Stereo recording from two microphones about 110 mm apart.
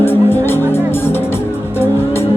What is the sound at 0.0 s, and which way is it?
Music, 20° left (ahead or behind).